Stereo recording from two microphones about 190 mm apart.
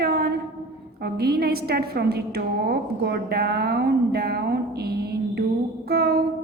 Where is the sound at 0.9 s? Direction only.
55° right (ahead or behind).